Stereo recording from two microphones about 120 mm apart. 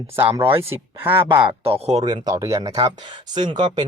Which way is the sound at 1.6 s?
60° right (ahead or behind).